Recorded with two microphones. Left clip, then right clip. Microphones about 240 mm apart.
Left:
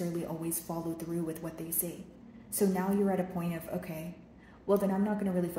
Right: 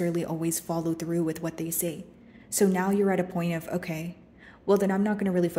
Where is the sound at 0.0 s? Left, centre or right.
Right.